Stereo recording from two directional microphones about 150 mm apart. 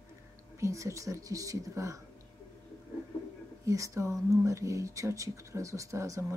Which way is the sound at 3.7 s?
20° right (ahead or behind).